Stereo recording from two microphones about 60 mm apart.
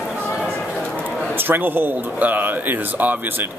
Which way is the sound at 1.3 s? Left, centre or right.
Right.